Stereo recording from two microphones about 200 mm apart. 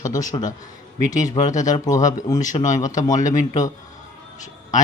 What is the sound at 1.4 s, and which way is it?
Speech, 40° left (ahead or behind).